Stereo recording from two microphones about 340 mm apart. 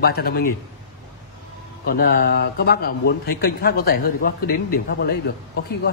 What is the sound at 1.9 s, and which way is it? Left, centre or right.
A man's voice, left.